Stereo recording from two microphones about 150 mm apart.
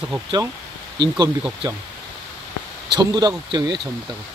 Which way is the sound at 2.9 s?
25° right (ahead or behind).